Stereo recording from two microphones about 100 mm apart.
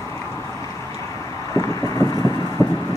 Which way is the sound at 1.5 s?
35° left (ahead or behind).